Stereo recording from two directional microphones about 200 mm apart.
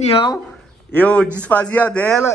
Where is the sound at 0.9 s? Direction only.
5° left (ahead or behind).